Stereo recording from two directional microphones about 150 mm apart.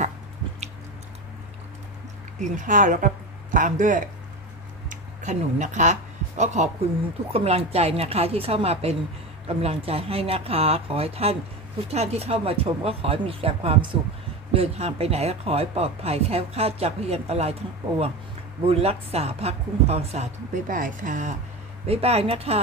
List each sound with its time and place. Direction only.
2.3 s speech: 55° right (ahead or behind)
4.8 s a sound: 55° right (ahead or behind)
7.3 s speech: 45° right (ahead or behind)
20.6 s speech: 65° right (ahead or behind)
21.8 s speech: 45° right (ahead or behind)